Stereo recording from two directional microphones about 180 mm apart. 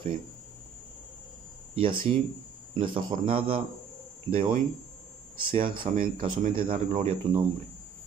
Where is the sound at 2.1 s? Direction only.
40° right (ahead or behind).